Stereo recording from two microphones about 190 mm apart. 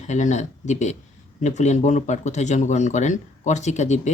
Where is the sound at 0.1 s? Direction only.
40° left (ahead or behind).